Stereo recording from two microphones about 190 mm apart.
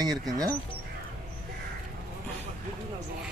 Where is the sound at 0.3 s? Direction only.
20° right (ahead or behind).